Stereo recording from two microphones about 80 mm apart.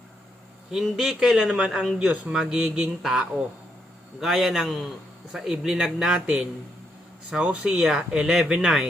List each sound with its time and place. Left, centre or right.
0.7 s a man's voice: centre
2.6 s speech: centre
3.0 s a man's voice: centre